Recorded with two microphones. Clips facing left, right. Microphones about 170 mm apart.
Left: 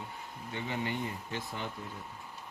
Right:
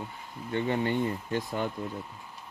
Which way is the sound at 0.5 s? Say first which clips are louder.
Right 8 dB; 50° right (ahead or behind).